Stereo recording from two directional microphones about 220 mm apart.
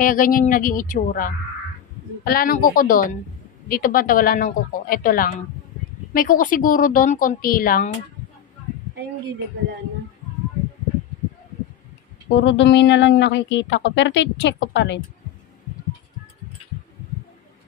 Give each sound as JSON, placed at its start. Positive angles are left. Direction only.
{"t": 0.0, "sound": "speech", "side_deg": 40}
{"t": 12.4, "sound": "a woman's voice", "side_deg": 55}